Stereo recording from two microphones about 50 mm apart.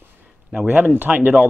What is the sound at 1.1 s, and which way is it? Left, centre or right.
Speech, right.